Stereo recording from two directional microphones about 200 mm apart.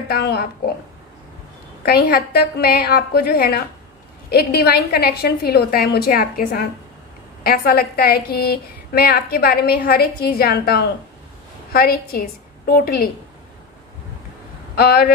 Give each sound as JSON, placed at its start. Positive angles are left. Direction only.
{"t": 0.1, "sound": "a woman's voice", "side_deg": 50}
{"t": 1.8, "sound": "a woman's voice", "side_deg": 50}
{"t": 14.8, "sound": "a woman's voice", "side_deg": 50}